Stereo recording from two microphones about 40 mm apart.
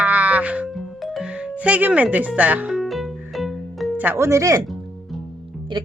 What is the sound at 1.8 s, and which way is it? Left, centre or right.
Speech, right.